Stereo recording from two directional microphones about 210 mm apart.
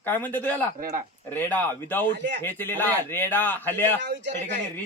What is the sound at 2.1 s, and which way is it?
Speech, 55° right (ahead or behind).